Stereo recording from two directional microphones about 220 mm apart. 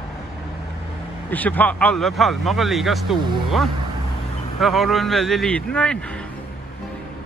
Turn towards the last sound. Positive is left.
turn(degrees=5)  # may be behind; listen again after turning